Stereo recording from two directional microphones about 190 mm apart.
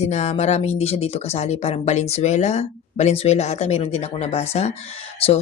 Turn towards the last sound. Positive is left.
turn(degrees=30)  # may be behind; listen again after turning